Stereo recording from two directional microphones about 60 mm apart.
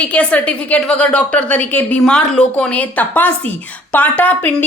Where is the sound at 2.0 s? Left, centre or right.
Centre.